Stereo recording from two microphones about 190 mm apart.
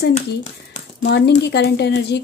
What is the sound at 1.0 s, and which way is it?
A woman's voice, 60° left (ahead or behind).